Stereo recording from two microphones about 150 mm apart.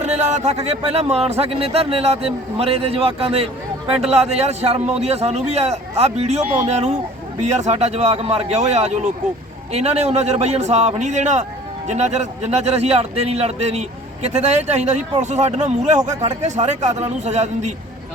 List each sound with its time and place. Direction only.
0.0 s a man's voice: 50° right (ahead or behind)